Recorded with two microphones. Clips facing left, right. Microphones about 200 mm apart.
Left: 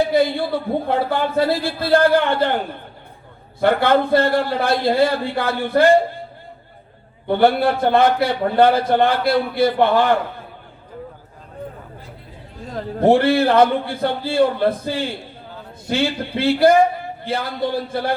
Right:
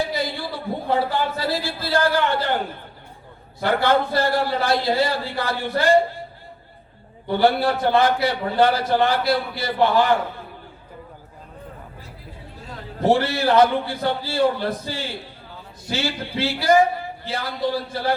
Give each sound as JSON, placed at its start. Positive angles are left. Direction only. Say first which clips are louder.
{"t": 0.1, "sound": "a man's voice", "louder": "left 9 dB", "side_deg": 55}
{"t": 3.6, "sound": "a man's voice", "louder": "left 4 dB", "side_deg": 55}
{"t": 7.3, "sound": "a man's voice", "louder": "left 3 dB", "side_deg": 55}
{"t": 13.1, "sound": "a man's voice", "louder": "left 4 dB", "side_deg": 55}